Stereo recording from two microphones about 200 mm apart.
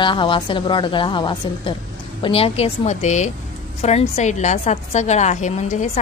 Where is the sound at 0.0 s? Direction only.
25° left (ahead or behind).